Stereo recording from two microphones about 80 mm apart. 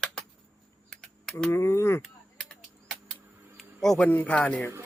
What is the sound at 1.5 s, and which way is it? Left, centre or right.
Speech, left.